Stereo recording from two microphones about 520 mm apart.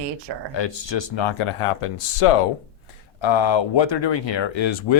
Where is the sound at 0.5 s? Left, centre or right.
Left.